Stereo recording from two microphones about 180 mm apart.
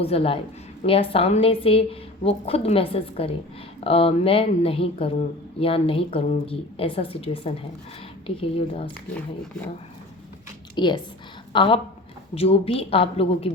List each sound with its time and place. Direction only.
0.0 s a woman's voice: 30° left (ahead or behind)
10.8 s a woman's voice: 25° left (ahead or behind)